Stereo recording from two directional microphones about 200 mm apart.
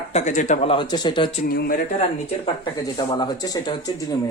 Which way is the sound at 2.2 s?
25° left (ahead or behind).